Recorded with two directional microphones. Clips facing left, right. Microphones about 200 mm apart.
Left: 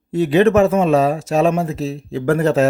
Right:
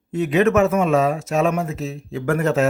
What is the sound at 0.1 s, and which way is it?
Speech, 35° left (ahead or behind).